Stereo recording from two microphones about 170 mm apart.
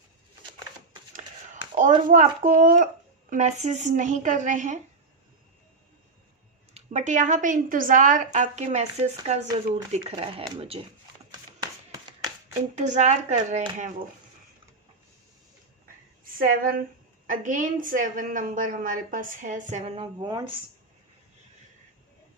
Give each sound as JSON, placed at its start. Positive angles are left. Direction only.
{"t": 2.0, "sound": "a woman's voice", "side_deg": -50}
{"t": 6.7, "sound": "a woman's voice", "side_deg": -45}
{"t": 12.7, "sound": "a woman's voice", "side_deg": -45}
{"t": 16.4, "sound": "a woman's voice", "side_deg": -55}